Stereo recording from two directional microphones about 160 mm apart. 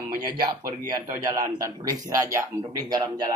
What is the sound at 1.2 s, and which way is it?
Speech, 25° right (ahead or behind).